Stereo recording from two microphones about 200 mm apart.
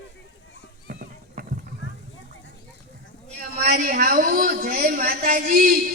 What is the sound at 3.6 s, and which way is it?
A man's voice, 45° right (ahead or behind).